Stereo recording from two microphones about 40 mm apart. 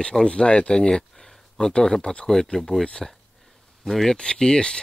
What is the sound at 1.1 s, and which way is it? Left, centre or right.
Speech, centre.